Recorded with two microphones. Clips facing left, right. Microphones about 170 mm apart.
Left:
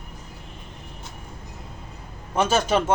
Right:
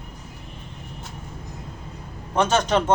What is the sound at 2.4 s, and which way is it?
Speech, 5° left (ahead or behind).